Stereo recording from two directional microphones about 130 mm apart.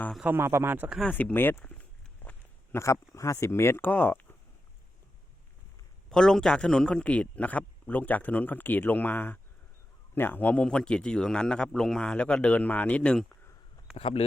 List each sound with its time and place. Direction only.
0.3 s a man's voice: 20° right (ahead or behind)
0.9 s a sound: 10° left (ahead or behind)
2.7 s speech: 25° left (ahead or behind)
6.1 s a man's voice: 5° left (ahead or behind)
13.9 s speech: 45° left (ahead or behind)